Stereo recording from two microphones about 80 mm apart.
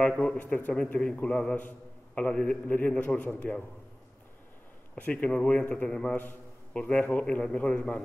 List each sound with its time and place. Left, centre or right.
0.0 s a man's voice: centre
4.9 s a man's voice: centre